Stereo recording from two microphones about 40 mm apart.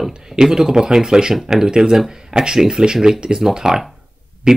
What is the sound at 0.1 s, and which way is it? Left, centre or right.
Speech, centre.